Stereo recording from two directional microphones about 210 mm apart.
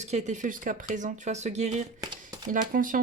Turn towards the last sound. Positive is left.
turn(degrees=-40)  # may be behind; listen again after turning